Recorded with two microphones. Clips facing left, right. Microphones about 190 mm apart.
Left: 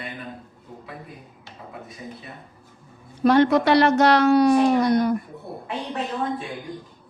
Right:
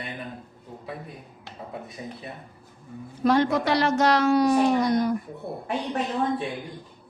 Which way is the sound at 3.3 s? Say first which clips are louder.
Left 5 dB; 65° left (ahead or behind).